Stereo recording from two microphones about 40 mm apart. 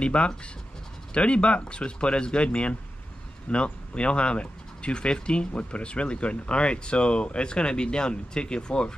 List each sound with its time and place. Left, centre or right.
0.0 s speech: left